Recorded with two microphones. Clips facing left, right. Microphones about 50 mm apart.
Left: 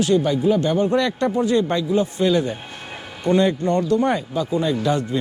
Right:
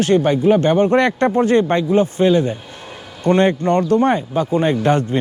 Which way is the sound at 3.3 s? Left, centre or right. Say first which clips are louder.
Right 3 dB; right.